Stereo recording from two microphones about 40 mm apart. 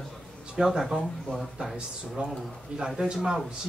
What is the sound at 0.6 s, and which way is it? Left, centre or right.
Speech, centre.